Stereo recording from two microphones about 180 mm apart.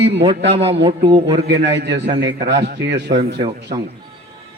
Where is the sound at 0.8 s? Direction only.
25° right (ahead or behind).